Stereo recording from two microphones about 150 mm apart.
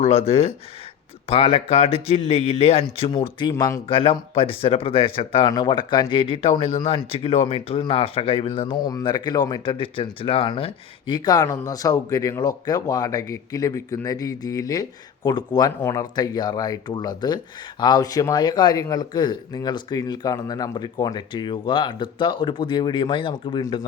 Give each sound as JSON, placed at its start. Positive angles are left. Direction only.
{"t": 0.0, "sound": "speech", "side_deg": 40}
{"t": 5.5, "sound": "speech", "side_deg": 25}
{"t": 8.8, "sound": "speech", "side_deg": 25}